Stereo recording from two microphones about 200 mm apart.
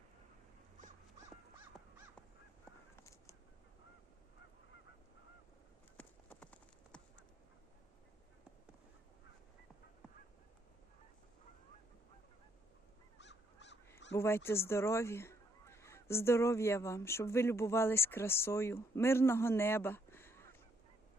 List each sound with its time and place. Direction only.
2.9 s a sound: 15° left (ahead or behind)
6.0 s clip-clop: 10° left (ahead or behind)
13.1 s honk: 60° left (ahead or behind)
14.2 s goose: 10° left (ahead or behind)